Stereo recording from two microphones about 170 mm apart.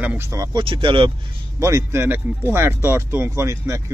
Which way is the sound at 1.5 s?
20° right (ahead or behind).